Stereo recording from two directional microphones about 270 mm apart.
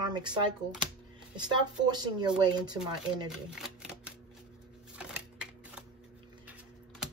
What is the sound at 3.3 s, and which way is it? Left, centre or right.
Camera, centre.